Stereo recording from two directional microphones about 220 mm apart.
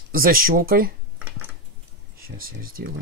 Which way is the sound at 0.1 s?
40° right (ahead or behind).